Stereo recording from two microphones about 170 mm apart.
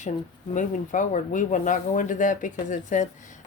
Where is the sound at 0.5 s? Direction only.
50° left (ahead or behind).